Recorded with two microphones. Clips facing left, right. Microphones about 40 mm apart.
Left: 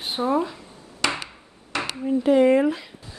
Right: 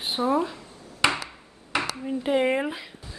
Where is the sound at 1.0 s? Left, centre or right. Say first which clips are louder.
Right 2 dB; centre.